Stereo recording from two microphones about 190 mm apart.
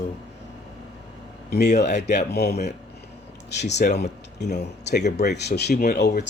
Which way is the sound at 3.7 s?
60° left (ahead or behind).